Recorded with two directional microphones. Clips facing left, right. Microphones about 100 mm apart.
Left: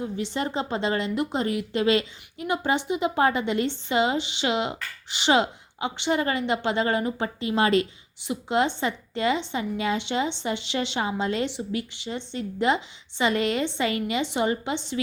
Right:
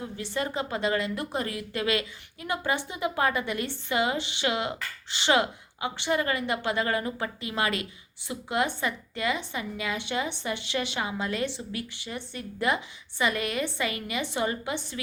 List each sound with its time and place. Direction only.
0.0 s a woman's voice: 25° left (ahead or behind)